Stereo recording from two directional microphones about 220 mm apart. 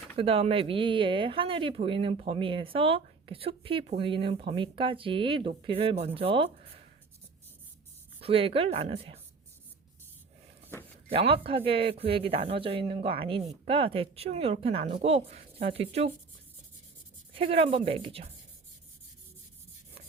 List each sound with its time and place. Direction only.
0.2 s speech: 25° right (ahead or behind)
8.2 s speech: 25° right (ahead or behind)
11.1 s speech: 25° right (ahead or behind)
17.3 s speech: 25° right (ahead or behind)